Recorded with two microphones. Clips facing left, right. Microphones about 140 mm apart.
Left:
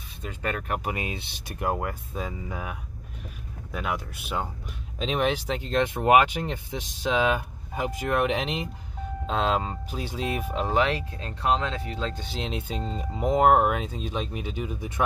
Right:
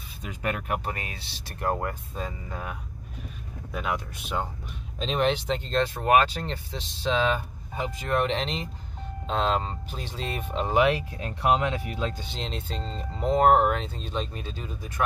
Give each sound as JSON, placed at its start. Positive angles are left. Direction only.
{"t": 0.3, "sound": "speech", "side_deg": -10}
{"t": 0.8, "sound": "speech", "side_deg": 20}
{"t": 1.5, "sound": "speech", "side_deg": 5}
{"t": 10.8, "sound": "speech", "side_deg": -15}
{"t": 12.3, "sound": "speech", "side_deg": 5}